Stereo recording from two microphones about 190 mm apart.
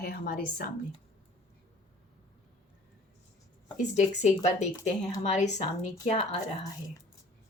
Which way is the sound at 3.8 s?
40° left (ahead or behind).